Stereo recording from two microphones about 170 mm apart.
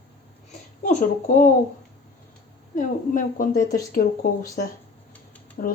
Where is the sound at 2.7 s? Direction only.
50° left (ahead or behind).